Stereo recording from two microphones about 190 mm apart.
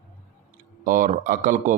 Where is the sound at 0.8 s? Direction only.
45° right (ahead or behind).